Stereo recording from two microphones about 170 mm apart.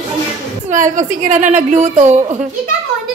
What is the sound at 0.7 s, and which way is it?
A woman's voice, 50° right (ahead or behind).